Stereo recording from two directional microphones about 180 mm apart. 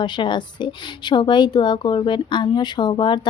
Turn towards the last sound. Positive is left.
turn(degrees=25)  # may be behind; listen again after turning